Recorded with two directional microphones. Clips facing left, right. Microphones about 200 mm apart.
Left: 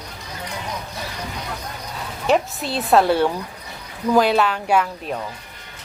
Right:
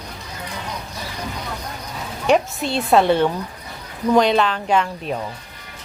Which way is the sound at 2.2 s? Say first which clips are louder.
Right 2 dB; centre (ahead or behind).